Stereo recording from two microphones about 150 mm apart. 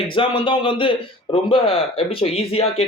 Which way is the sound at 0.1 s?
35° left (ahead or behind).